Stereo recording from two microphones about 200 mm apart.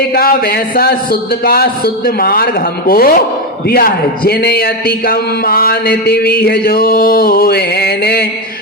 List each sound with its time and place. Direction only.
0.1 s a man's voice: 50° left (ahead or behind)